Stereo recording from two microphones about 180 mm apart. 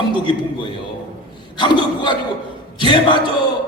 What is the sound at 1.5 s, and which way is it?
A man's voice, 25° left (ahead or behind).